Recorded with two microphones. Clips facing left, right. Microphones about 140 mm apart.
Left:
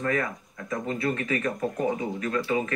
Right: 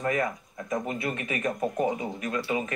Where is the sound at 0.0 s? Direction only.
20° right (ahead or behind).